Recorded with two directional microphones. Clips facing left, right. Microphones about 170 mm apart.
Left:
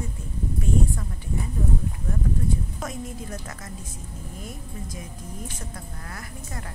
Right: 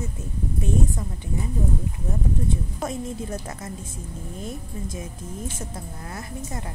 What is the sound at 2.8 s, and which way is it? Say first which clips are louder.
Speech: right 4 dB; 25° right (ahead or behind).